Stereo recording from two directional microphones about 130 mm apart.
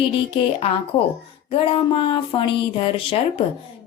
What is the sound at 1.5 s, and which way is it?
Speech, 45° left (ahead or behind).